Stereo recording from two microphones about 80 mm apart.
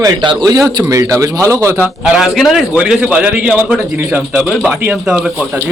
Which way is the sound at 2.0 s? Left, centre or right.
Centre.